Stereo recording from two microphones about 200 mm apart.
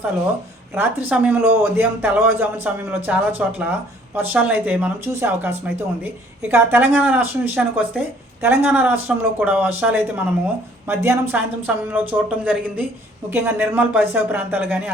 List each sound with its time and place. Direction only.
0.7 s speech: 10° right (ahead or behind)